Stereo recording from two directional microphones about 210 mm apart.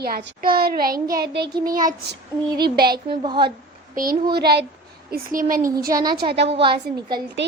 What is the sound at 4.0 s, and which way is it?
Child singing, 40° right (ahead or behind).